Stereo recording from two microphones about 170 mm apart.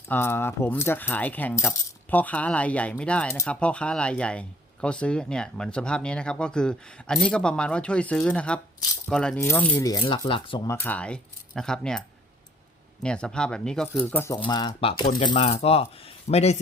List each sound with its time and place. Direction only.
0.1 s speech: 15° left (ahead or behind)
9.7 s speech: 25° left (ahead or behind)
10.7 s speech: 10° left (ahead or behind)
14.3 s speech: 25° left (ahead or behind)